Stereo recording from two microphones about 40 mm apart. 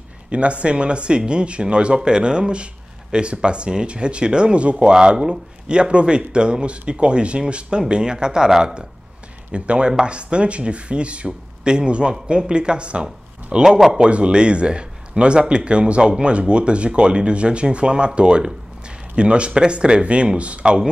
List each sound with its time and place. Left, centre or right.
0.3 s speech: right
4.9 s speech: centre
9.5 s speech: right
13.7 s speech: centre
13.9 s speech: right